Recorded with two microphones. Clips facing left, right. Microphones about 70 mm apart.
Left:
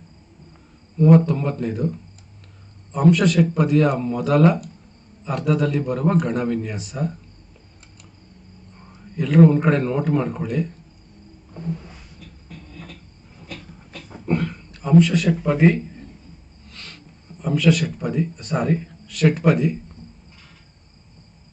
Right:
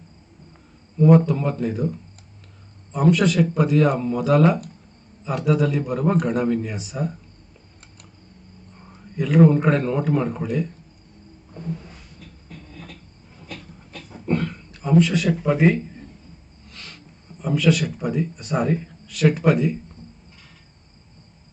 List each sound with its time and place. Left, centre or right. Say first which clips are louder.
1.0 s a man's voice: even; centre
9.1 s a man's voice: left 1 dB; centre
14.3 s speech: even; centre
16.6 s a sound: even; centre
17.4 s a man's voice: left 1 dB; centre